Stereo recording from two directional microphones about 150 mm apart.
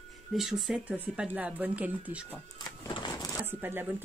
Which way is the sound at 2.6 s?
30° left (ahead or behind).